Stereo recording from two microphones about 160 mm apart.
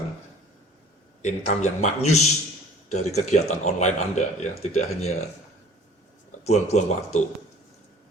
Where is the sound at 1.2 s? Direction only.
45° left (ahead or behind).